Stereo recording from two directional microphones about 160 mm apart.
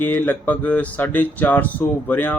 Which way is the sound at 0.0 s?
10° left (ahead or behind).